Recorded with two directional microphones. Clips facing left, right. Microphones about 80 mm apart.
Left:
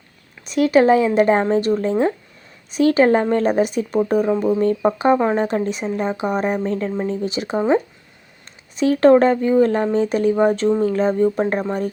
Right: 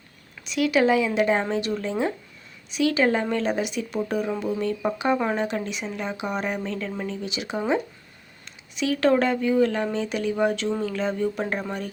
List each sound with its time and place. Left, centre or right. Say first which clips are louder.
0.4 s speech: left 7 dB; left
5.5 s speech: left 8 dB; left
8.7 s speech: left 8 dB; left